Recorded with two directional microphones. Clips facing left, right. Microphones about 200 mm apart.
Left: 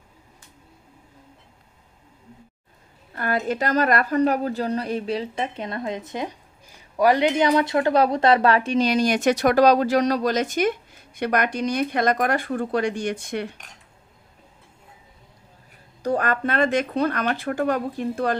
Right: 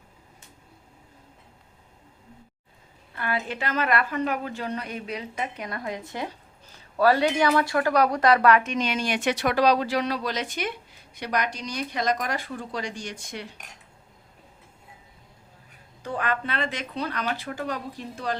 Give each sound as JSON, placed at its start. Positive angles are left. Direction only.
{"t": 3.1, "sound": "a woman's voice", "side_deg": 45}
{"t": 16.0, "sound": "speech", "side_deg": 45}